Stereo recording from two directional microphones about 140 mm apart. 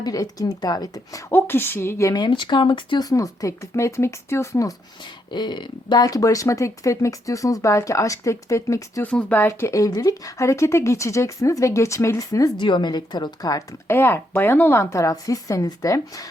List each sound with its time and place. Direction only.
0.0 s speech: 25° left (ahead or behind)
1.3 s speech: 15° left (ahead or behind)
5.3 s speech: 30° left (ahead or behind)